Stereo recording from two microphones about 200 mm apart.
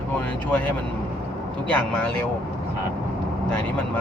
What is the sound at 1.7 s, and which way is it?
Speech, 5° left (ahead or behind).